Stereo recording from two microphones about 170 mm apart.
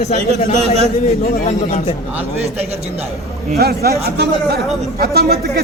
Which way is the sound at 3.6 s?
65° right (ahead or behind).